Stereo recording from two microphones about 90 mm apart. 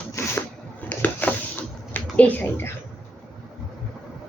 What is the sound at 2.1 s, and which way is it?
Speech, 15° left (ahead or behind).